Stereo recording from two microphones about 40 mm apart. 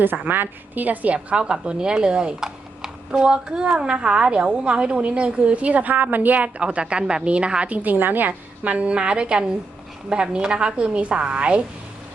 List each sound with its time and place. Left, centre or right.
0.0 s a woman's voice: right
1.1 s a woman's voice: right
6.6 s a woman's voice: right
7.8 s a woman's voice: right
8.6 s a woman's voice: right